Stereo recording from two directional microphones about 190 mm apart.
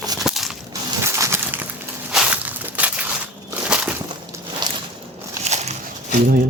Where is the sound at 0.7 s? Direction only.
15° right (ahead or behind).